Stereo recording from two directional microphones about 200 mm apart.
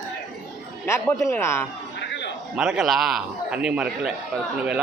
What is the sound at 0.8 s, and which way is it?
Speech, 15° left (ahead or behind).